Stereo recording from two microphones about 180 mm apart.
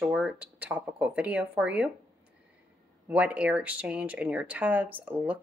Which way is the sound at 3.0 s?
10° right (ahead or behind).